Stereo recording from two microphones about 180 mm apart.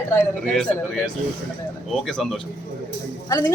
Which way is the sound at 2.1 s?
5° left (ahead or behind).